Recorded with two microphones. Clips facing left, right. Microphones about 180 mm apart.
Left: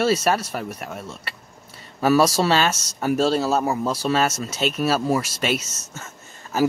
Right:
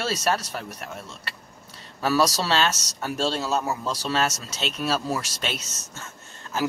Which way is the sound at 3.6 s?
50° left (ahead or behind).